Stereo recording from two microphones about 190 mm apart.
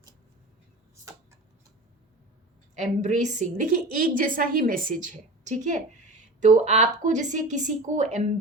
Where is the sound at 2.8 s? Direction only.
40° right (ahead or behind).